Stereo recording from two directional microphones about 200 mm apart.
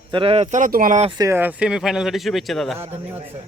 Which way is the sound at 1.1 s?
15° right (ahead or behind).